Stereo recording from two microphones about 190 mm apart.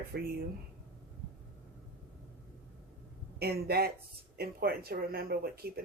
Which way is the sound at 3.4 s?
55° right (ahead or behind).